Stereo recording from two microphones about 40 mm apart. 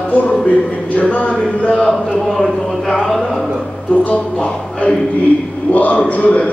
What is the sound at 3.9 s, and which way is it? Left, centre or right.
A man's voice, left.